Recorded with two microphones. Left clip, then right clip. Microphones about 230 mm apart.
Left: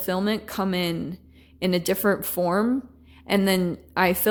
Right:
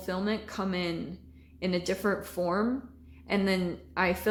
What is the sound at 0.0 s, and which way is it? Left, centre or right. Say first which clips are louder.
A woman's voice: left 6 dB; left.